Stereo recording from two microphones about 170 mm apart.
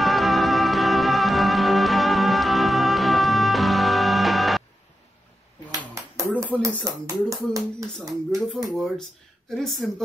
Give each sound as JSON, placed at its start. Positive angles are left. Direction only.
{"t": 0.0, "sound": "music", "side_deg": 0}
{"t": 6.5, "sound": "speech", "side_deg": -15}
{"t": 8.6, "sound": "speech", "side_deg": 0}